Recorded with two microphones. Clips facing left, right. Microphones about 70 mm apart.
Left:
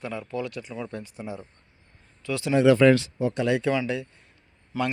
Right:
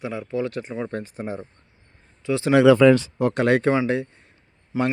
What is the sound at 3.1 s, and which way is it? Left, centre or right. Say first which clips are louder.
Speech: right 5 dB; right.